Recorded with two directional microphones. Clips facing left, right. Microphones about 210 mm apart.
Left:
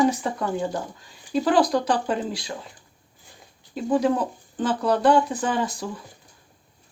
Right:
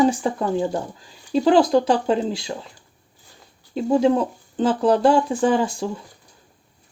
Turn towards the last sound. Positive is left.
turn(degrees=-30)  # may be behind; listen again after turning